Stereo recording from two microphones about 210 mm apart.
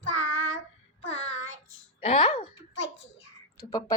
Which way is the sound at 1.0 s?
30° left (ahead or behind).